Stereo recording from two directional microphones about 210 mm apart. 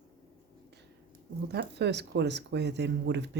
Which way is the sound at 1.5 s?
55° right (ahead or behind).